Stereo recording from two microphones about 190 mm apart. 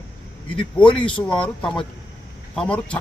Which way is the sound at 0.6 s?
25° left (ahead or behind).